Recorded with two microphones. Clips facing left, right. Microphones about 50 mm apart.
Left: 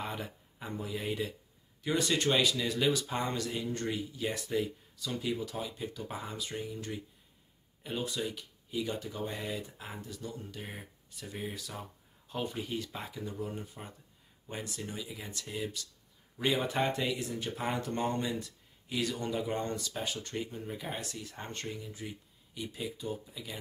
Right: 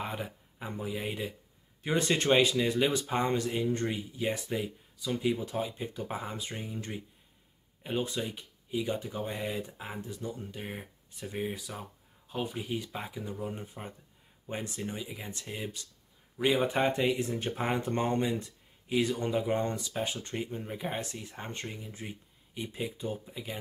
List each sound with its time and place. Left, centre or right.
0.0 s a sound: centre
0.7 s speech: centre
1.8 s speech: right
5.4 s speech: right
11.3 s speech: centre
16.3 s speech: centre